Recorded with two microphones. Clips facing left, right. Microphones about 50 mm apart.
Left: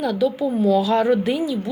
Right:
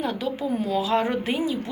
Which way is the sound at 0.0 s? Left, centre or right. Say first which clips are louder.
Left 7 dB; right.